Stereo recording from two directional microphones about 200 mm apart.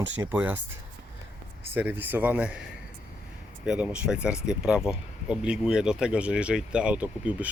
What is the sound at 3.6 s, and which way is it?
Speech, 5° right (ahead or behind).